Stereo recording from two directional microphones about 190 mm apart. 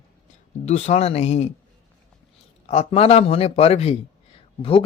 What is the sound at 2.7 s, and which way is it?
Speech, 35° left (ahead or behind).